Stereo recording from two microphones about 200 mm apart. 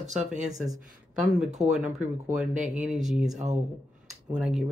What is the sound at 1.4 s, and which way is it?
Speech, 35° right (ahead or behind).